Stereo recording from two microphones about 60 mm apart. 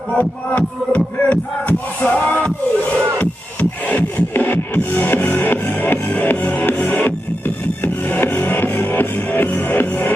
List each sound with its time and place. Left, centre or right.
0.2 s music: left